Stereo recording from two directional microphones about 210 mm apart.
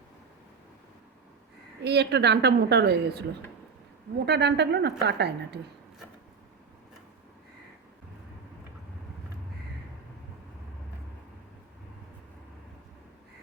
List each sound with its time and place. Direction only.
1.8 s a woman's voice: 50° right (ahead or behind)
4.3 s a woman's voice: 55° right (ahead or behind)